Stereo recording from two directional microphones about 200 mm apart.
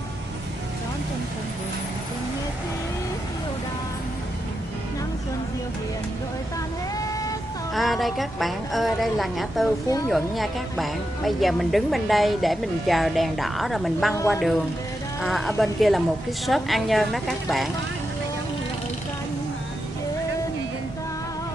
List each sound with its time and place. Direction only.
7.7 s a woman's voice: centre (ahead or behind)
9.8 s a woman's voice: 15° left (ahead or behind)
10.1 s a woman's voice: centre (ahead or behind)
14.1 s a woman's voice: 10° left (ahead or behind)
15.2 s a woman's voice: centre (ahead or behind)